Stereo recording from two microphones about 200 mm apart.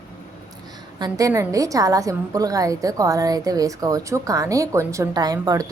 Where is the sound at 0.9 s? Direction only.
20° right (ahead or behind).